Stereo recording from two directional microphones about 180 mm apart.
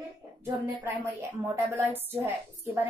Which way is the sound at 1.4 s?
15° right (ahead or behind).